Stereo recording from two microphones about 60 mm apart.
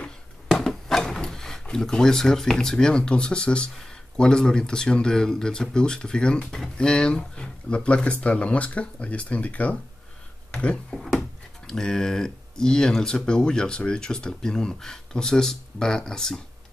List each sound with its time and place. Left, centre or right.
0.6 s speech: centre
6.4 s speech: centre
6.8 s speech: centre